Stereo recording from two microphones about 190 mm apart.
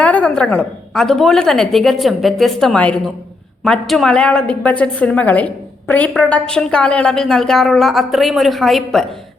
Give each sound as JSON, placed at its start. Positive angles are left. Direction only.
{"t": 0.0, "sound": "a woman's voice", "side_deg": 5}